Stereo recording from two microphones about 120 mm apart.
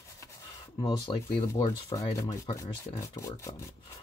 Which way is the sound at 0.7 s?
40° left (ahead or behind).